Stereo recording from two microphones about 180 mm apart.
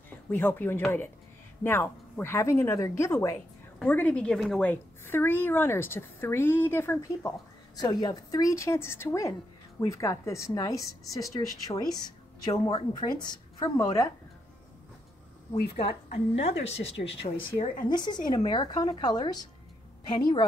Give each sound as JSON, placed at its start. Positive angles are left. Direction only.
{"t": 0.3, "sound": "a woman's voice", "side_deg": 10}
{"t": 15.7, "sound": "a woman's voice", "side_deg": 30}